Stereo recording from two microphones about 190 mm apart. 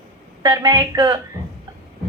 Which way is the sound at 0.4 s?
20° right (ahead or behind).